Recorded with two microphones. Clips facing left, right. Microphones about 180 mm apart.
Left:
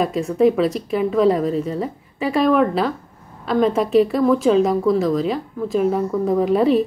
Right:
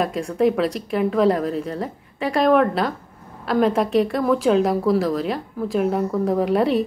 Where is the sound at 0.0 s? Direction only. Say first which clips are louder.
Left 3 dB; centre (ahead or behind).